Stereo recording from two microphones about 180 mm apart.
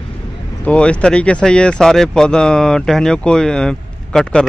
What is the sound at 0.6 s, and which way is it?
Speech, 5° left (ahead or behind).